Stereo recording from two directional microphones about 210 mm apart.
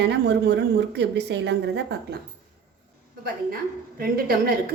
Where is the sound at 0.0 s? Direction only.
55° right (ahead or behind).